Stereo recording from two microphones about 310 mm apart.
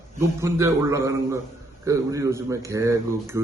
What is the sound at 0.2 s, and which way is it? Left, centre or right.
A man's voice, centre.